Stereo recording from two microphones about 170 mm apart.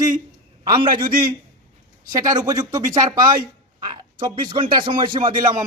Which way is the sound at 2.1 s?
25° right (ahead or behind).